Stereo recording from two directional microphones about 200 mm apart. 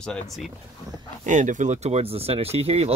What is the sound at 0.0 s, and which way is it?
Speech, 5° left (ahead or behind).